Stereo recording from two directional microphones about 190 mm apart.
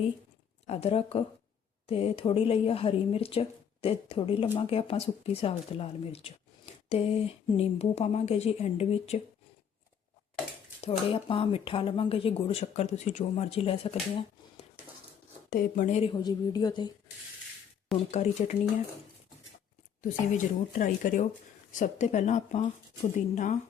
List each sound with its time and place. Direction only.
0.7 s speech: 30° left (ahead or behind)
10.8 s speech: 30° left (ahead or behind)
15.4 s speech: 50° left (ahead or behind)
16.1 s a woman's voice: 20° left (ahead or behind)
18.1 s speech: 35° left (ahead or behind)
20.0 s speech: 45° left (ahead or behind)